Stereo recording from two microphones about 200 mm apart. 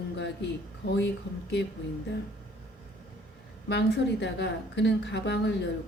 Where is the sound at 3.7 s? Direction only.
60° left (ahead or behind).